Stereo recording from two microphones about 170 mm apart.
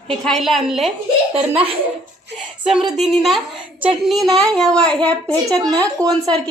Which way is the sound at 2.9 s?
Centre (ahead or behind).